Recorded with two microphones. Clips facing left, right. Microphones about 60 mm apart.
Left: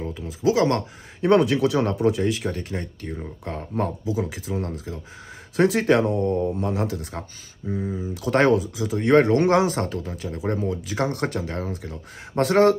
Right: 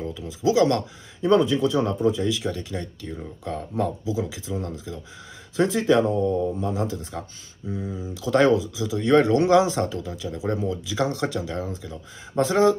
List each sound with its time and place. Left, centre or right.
0.0 s speech: left
1.2 s speech: left
2.2 s speech: left
5.7 s speech: left
7.6 s speech: left
7.9 s speech: left